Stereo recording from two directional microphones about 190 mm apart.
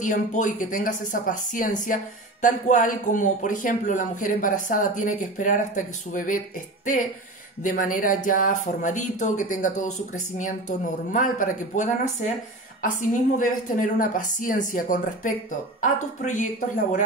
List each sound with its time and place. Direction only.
0.0 s speech: 40° left (ahead or behind)
13.4 s a woman's voice: 45° left (ahead or behind)